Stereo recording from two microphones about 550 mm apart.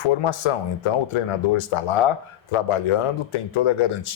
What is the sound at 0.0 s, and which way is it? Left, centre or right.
Speech, left.